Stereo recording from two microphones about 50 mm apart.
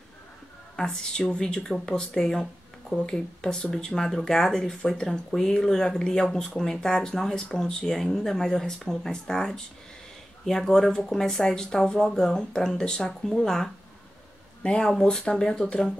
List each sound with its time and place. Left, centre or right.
0.7 s speech: centre